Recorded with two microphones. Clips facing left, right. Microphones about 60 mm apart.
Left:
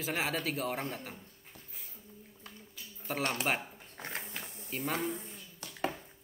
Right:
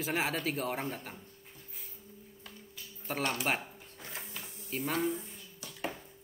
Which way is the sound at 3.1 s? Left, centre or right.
Centre.